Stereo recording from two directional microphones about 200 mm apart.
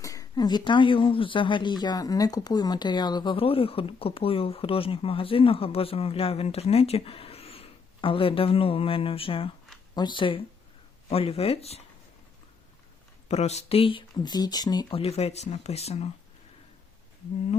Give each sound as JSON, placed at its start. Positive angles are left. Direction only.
{"t": 0.0, "sound": "a woman's voice", "side_deg": 15}
{"t": 13.2, "sound": "speech", "side_deg": 35}